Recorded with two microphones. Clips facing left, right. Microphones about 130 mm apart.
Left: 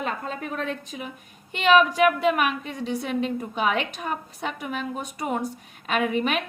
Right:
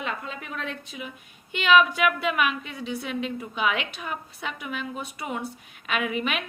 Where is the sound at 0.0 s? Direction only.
40° left (ahead or behind).